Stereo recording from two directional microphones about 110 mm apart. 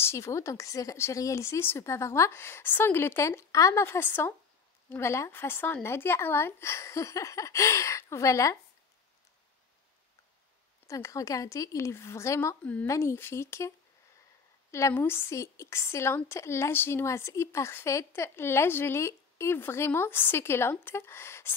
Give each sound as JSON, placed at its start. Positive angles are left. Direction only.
{"t": 0.0, "sound": "speech", "side_deg": 25}
{"t": 10.9, "sound": "speech", "side_deg": 30}